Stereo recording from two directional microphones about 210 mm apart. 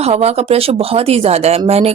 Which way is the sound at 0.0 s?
30° right (ahead or behind).